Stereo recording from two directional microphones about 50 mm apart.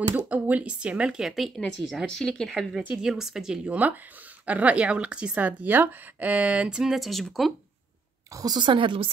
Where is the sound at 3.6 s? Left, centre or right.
Right.